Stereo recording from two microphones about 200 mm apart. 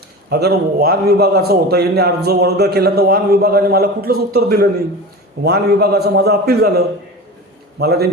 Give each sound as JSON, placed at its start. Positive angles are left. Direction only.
{"t": 0.3, "sound": "a man's voice", "side_deg": -55}